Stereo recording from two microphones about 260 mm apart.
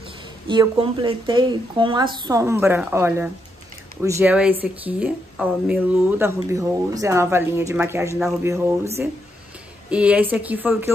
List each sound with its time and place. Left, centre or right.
0.5 s speech: centre
9.8 s speech: centre